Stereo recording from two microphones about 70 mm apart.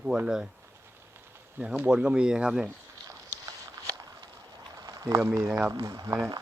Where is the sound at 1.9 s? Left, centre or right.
Centre.